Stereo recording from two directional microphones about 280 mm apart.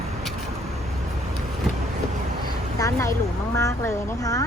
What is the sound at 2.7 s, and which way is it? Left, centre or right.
A woman's voice, centre.